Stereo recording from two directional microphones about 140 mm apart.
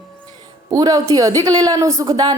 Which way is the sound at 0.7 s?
25° right (ahead or behind).